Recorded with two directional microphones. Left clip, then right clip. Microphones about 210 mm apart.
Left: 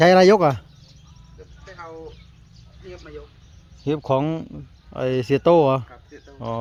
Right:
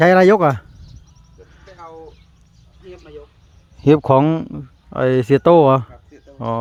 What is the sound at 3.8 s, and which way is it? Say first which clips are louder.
Speech: right 9 dB; 35° right (ahead or behind).